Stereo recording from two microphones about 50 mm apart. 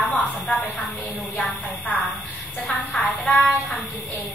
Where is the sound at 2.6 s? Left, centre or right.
Centre.